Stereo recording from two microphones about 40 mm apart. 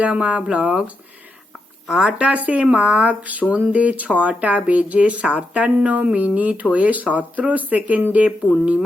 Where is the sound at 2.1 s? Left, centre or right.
Right.